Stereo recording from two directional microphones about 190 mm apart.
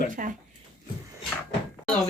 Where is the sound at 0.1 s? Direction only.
45° right (ahead or behind).